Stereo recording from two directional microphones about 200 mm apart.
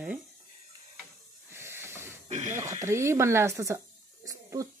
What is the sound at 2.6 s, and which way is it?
Speech, 15° right (ahead or behind).